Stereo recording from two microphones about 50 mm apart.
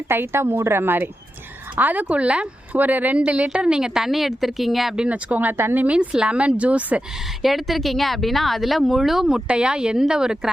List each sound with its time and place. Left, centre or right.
0.1 s a woman's voice: right
2.7 s a woman's voice: right; by 4.9 s centre
5.0 s speech: right
5.5 s a woman's voice: right
5.8 s speech: right
7.4 s speech: centre
9.2 s a woman's voice: centre